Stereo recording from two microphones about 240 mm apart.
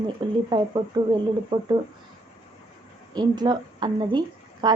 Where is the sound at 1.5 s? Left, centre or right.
Centre.